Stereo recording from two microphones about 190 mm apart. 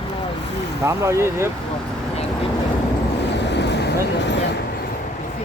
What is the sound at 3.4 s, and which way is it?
Vehicle, 65° left (ahead or behind).